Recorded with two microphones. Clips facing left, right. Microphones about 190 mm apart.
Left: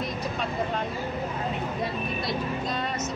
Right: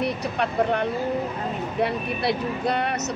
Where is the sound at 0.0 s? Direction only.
70° right (ahead or behind).